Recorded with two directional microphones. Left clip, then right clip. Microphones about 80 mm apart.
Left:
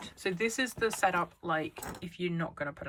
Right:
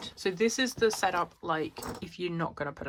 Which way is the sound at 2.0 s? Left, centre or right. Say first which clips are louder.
Right 1 dB; right.